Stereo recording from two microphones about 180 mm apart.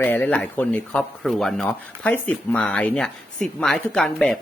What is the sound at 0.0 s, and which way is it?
Speech, 10° left (ahead or behind).